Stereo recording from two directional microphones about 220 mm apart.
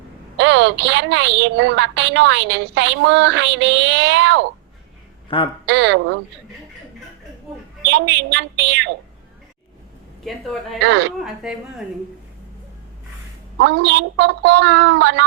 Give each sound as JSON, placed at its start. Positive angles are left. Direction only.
{"t": 0.3, "sound": "a woman's voice", "side_deg": -55}
{"t": 5.3, "sound": "a man's voice", "side_deg": 25}
{"t": 5.6, "sound": "a woman's voice", "side_deg": -50}
{"t": 7.9, "sound": "a woman's voice", "side_deg": -55}
{"t": 10.2, "sound": "a woman's voice", "side_deg": 0}
{"t": 13.6, "sound": "a woman's voice", "side_deg": -50}